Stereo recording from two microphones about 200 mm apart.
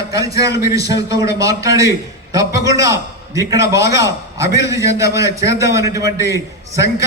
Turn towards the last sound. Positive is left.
turn(degrees=-15)  # may be behind; listen again after turning